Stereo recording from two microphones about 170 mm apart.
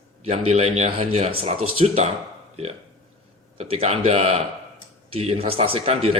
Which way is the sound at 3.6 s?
40° right (ahead or behind).